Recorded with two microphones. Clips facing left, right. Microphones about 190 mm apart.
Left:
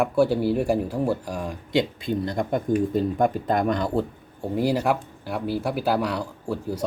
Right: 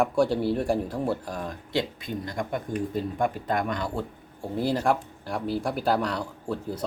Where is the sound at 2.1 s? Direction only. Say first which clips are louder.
Left 6 dB; 30° left (ahead or behind).